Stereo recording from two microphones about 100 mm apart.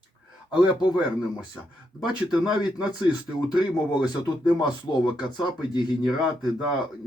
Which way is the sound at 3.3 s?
40° left (ahead or behind).